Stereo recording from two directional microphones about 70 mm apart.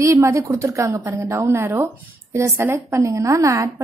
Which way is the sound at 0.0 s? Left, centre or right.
Right.